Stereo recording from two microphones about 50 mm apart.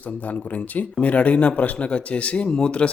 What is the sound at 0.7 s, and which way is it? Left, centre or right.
A man's voice, left.